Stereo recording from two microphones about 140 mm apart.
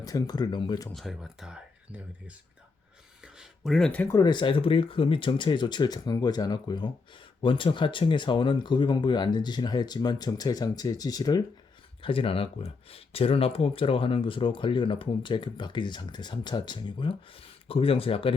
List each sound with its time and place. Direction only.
0.0 s speech: 25° left (ahead or behind)
0.9 s speech: centre (ahead or behind)
3.3 s a sound: centre (ahead or behind)
4.1 s speech: 30° left (ahead or behind)
12.0 s speech: 40° left (ahead or behind)